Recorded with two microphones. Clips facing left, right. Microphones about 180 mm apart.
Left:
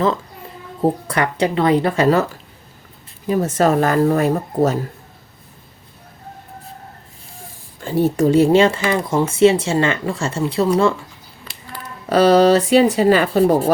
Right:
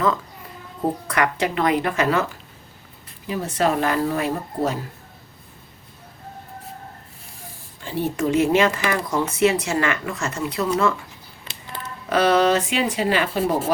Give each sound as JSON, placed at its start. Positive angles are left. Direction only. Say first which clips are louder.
{"t": 0.8, "sound": "speech", "louder": "left 4 dB", "side_deg": 30}
{"t": 7.8, "sound": "speech", "louder": "left 7 dB", "side_deg": 45}
{"t": 12.0, "sound": "speech", "louder": "left 6 dB", "side_deg": 35}